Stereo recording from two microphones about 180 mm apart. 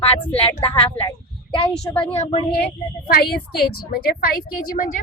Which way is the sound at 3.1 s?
60° left (ahead or behind).